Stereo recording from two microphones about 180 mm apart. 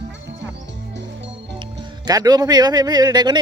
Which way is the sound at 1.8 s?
20° right (ahead or behind).